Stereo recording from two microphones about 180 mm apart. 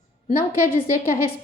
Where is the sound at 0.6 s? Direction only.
50° left (ahead or behind).